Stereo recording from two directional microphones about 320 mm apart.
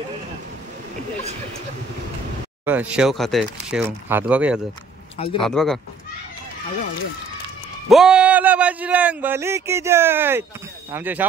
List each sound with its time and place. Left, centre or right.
2.6 s speech: centre
5.1 s speech: centre
5.4 s speech: centre
7.9 s speech: centre